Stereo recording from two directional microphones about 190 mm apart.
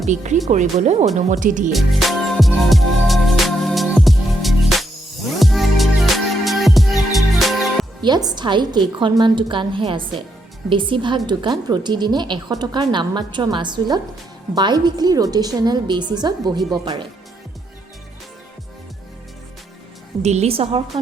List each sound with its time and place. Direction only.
0.1 s speech: 40° right (ahead or behind)
1.7 s music: centre (ahead or behind)
8.0 s speech: 20° right (ahead or behind)
20.2 s speech: 35° right (ahead or behind)